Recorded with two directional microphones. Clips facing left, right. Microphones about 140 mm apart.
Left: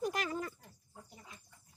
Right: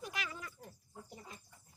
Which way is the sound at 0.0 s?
40° left (ahead or behind).